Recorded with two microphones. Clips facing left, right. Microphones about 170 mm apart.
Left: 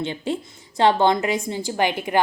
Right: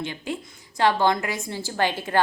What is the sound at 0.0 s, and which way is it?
A woman's voice, 25° left (ahead or behind).